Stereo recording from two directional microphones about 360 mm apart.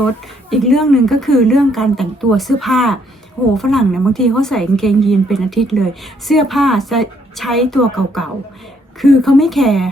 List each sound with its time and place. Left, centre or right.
0.5 s a woman's voice: centre